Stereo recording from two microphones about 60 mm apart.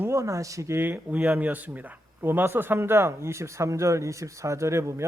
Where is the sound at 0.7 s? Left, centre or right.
Right.